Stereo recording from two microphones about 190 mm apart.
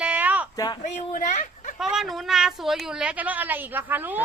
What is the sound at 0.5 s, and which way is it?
Speech, 20° left (ahead or behind).